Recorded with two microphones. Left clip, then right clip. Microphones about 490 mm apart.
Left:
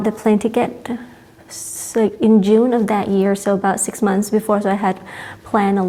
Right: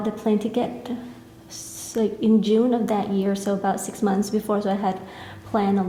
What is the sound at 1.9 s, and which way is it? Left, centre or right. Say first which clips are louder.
A woman's voice: left 7 dB; left.